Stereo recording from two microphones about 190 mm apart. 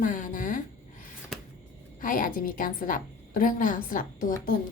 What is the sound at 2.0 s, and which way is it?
A woman's voice, 45° left (ahead or behind).